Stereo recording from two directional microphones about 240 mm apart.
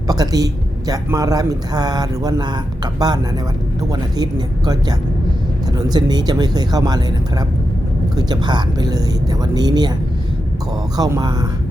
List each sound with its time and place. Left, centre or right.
0.1 s speech: centre
4.2 s speech: centre
10.9 s speech: centre